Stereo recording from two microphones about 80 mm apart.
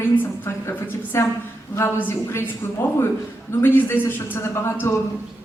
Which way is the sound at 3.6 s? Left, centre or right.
Left.